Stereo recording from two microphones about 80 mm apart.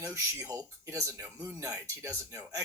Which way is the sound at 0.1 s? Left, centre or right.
Right.